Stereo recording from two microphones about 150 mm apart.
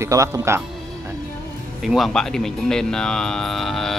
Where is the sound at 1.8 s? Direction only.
Centre (ahead or behind).